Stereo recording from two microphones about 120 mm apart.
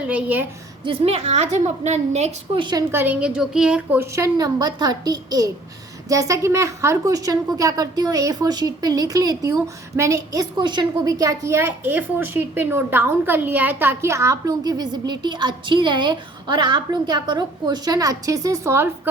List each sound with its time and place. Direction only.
0.1 s a woman's voice: 10° right (ahead or behind)
0.9 s a woman's voice: 55° right (ahead or behind)
2.6 s a woman's voice: 40° right (ahead or behind)
2.9 s a woman's voice: 15° right (ahead or behind)
4.0 s a woman's voice: 25° right (ahead or behind)
10.6 s a woman's voice: 40° right (ahead or behind); by 18.9 s 25° right (ahead or behind)